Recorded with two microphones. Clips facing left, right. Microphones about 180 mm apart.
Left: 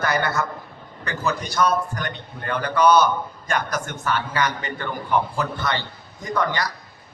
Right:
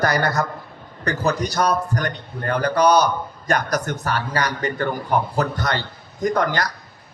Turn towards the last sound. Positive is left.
turn(degrees=-40)  # may be behind; listen again after turning